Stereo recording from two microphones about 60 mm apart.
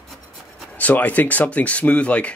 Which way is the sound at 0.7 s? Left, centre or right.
Left.